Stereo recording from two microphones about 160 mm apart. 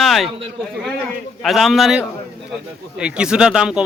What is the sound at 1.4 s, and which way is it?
A man's voice, centre (ahead or behind).